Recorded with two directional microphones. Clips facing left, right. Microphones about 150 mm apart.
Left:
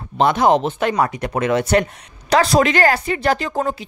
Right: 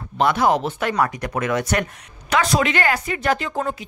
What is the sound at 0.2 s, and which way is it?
Speech, 25° left (ahead or behind).